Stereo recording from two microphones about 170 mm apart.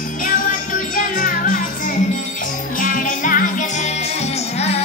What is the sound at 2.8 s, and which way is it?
Music, 55° left (ahead or behind).